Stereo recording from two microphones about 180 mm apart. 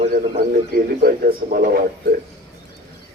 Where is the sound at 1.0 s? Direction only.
55° right (ahead or behind).